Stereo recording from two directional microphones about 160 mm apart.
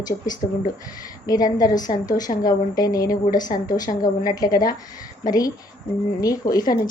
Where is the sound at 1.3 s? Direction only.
25° left (ahead or behind).